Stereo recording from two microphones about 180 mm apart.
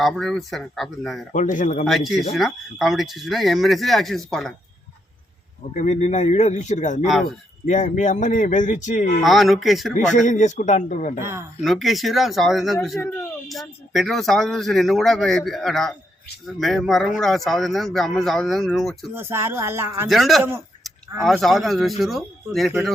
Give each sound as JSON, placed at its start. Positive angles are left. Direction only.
{"t": 0.0, "sound": "speech", "side_deg": 0}
{"t": 1.3, "sound": "speech", "side_deg": 45}
{"t": 1.9, "sound": "speech", "side_deg": 0}
{"t": 5.7, "sound": "speech", "side_deg": 40}
{"t": 7.1, "sound": "speech", "side_deg": 0}
{"t": 7.6, "sound": "speech", "side_deg": 40}
{"t": 9.2, "sound": "speech", "side_deg": 0}
{"t": 9.9, "sound": "speech", "side_deg": 45}
{"t": 11.2, "sound": "speech", "side_deg": -15}
{"t": 11.6, "sound": "speech", "side_deg": 0}
{"t": 19.1, "sound": "speech", "side_deg": -15}
{"t": 20.1, "sound": "speech", "side_deg": 0}